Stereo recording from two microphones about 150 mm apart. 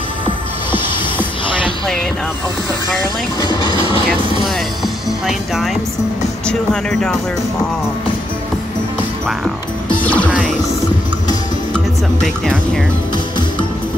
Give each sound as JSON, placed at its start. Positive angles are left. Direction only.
{"t": 3.7, "sound": "train", "side_deg": -35}
{"t": 5.2, "sound": "speech", "side_deg": 0}
{"t": 10.0, "sound": "music", "side_deg": 10}
{"t": 11.7, "sound": "speech", "side_deg": 0}